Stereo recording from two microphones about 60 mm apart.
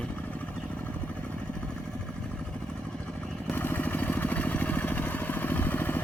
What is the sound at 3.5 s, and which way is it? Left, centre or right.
Vehicle, left.